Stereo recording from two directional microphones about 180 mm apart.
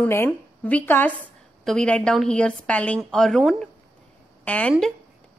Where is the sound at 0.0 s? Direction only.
10° left (ahead or behind).